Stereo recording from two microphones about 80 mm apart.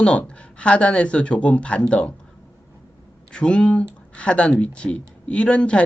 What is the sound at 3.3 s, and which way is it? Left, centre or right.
Speech, centre.